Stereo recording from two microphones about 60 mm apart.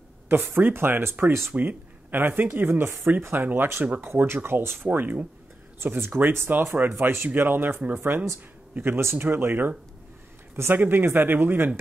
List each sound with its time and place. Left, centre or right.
0.3 s speech: right
1.5 s speech: right
3.8 s speech: right
4.1 s speech: right
5.8 s speech: right